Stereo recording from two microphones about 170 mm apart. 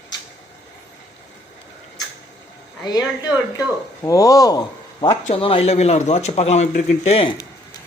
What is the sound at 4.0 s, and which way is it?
Speech, 20° left (ahead or behind).